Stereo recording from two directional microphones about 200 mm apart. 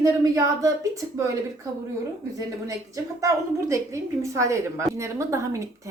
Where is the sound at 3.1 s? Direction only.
15° right (ahead or behind).